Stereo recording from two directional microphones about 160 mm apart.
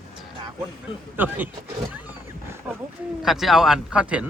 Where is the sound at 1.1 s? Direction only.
10° right (ahead or behind).